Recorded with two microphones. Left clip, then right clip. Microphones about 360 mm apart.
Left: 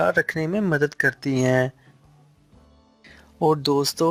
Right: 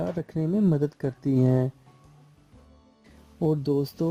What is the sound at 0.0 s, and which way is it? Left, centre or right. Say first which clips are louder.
Speech: left 10 dB; left.